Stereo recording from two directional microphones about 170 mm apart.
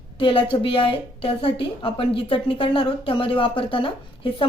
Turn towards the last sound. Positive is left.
turn(degrees=30)  # may be behind; listen again after turning